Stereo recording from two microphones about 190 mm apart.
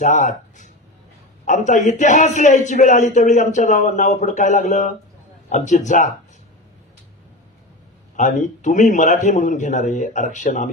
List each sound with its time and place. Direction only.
0.0 s a man's voice: 40° left (ahead or behind)
8.2 s a man's voice: 40° left (ahead or behind)